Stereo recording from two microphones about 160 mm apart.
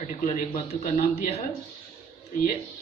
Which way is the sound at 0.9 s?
60° left (ahead or behind).